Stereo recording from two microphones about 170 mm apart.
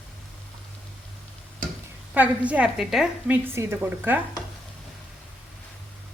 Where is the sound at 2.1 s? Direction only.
10° right (ahead or behind).